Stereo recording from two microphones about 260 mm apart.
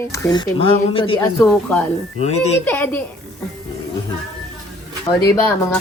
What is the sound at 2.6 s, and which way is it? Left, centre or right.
Speech, centre.